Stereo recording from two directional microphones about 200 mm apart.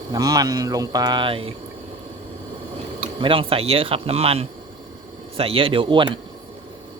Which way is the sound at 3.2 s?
25° right (ahead or behind).